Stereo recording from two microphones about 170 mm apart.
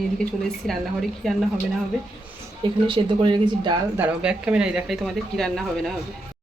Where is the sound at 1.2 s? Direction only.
Centre (ahead or behind).